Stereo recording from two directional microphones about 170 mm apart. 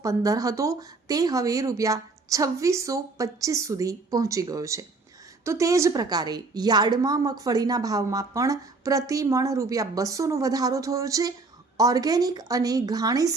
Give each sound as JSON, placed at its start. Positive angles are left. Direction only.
{"t": 0.0, "sound": "a woman's voice", "side_deg": -20}